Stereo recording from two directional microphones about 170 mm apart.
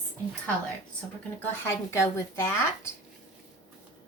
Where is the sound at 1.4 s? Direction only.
15° left (ahead or behind).